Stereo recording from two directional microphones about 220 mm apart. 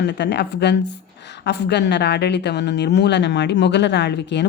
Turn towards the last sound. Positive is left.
turn(degrees=50)  # may be behind; listen again after turning